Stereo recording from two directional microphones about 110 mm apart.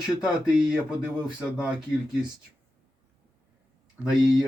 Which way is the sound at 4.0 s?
5° right (ahead or behind).